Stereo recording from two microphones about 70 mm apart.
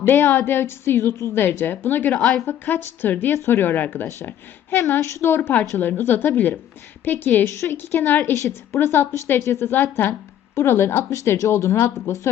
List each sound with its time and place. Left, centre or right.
0.3 s a woman's voice: left
4.8 s a woman's voice: left
5.4 s a woman's voice: left
7.4 s speech: left
7.8 s a woman's voice: left
8.3 s a woman's voice: left
10.1 s a woman's voice: left
11.1 s a woman's voice: left